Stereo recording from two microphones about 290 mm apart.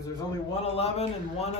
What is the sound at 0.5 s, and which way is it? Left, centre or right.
Speech, left.